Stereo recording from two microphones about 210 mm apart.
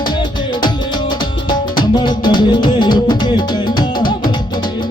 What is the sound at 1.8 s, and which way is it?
Music, 20° left (ahead or behind).